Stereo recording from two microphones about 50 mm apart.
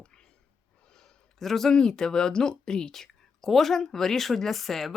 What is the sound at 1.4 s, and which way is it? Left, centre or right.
Speech, centre.